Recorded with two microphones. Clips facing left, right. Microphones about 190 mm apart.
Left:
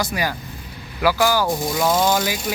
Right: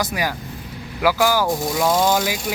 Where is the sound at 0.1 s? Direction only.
15° right (ahead or behind).